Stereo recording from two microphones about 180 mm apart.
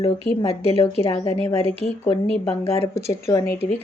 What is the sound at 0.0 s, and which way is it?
A woman's voice, 35° left (ahead or behind).